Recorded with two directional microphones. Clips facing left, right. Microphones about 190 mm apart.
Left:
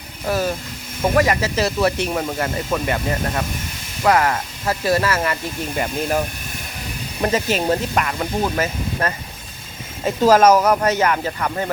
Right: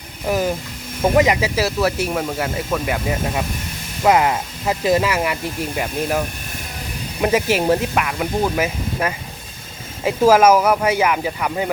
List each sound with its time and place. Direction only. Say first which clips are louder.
0.3 s speech: right 1 dB; 15° right (ahead or behind)
4.0 s speech: right 1 dB; 15° right (ahead or behind)